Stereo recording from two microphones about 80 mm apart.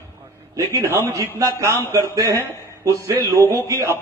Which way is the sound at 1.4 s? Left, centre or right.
Right.